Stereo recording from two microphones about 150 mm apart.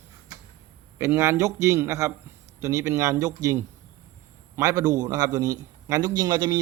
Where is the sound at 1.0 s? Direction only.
15° right (ahead or behind).